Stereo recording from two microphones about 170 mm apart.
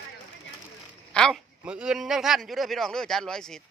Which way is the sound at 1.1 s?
5° left (ahead or behind).